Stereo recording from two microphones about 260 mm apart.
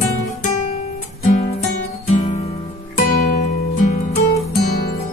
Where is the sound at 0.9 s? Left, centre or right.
Left.